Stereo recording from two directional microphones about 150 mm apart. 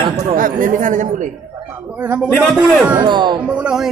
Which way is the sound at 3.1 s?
30° right (ahead or behind).